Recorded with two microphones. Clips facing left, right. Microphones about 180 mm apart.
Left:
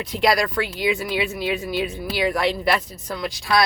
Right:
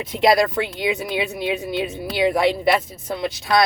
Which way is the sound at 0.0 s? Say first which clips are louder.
Right 3 dB; 25° right (ahead or behind).